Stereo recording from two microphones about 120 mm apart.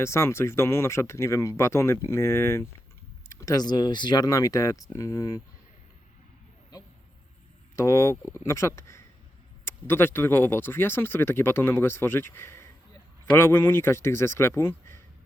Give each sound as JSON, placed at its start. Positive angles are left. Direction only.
{"t": 0.0, "sound": "speech", "side_deg": 20}
{"t": 7.8, "sound": "speech", "side_deg": 25}